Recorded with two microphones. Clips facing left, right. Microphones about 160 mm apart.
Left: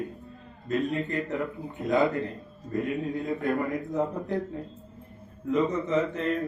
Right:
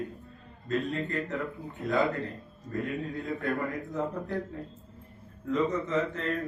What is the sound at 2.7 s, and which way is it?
A man's voice, 20° left (ahead or behind).